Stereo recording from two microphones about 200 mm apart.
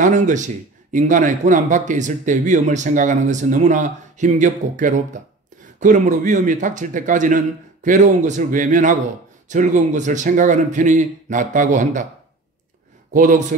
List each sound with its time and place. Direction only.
0.0 s speech: 40° right (ahead or behind)
13.1 s speech: 40° right (ahead or behind)